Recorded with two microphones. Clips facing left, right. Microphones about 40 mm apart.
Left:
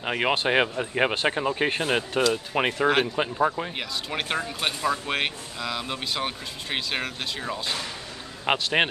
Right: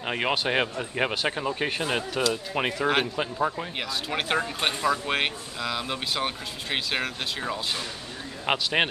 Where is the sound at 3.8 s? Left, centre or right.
Centre.